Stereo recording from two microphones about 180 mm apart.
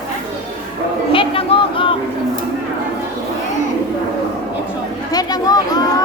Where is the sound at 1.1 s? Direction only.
30° left (ahead or behind).